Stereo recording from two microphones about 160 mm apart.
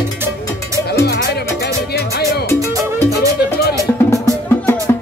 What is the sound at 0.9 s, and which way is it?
Music, 85° left.